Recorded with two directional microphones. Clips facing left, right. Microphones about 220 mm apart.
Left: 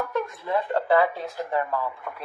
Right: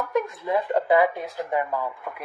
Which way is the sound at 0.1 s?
15° right (ahead or behind).